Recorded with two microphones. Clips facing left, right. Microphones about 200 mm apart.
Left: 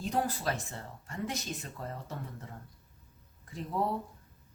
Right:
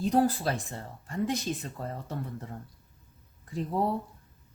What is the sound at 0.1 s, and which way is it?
Speech, 35° right (ahead or behind).